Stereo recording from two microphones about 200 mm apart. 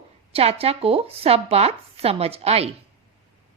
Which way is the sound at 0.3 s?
30° right (ahead or behind).